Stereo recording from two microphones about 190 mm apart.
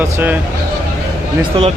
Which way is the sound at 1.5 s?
30° right (ahead or behind).